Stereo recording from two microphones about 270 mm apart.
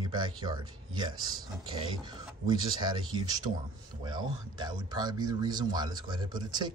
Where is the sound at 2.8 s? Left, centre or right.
Centre.